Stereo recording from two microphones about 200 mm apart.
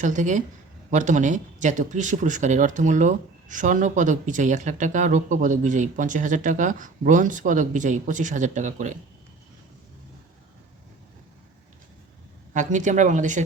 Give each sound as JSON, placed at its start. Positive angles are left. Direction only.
{"t": 0.0, "sound": "speech", "side_deg": -40}
{"t": 12.5, "sound": "speech", "side_deg": -40}